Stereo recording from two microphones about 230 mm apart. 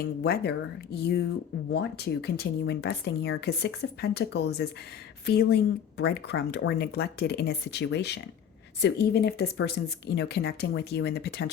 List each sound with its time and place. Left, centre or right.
0.0 s speech: left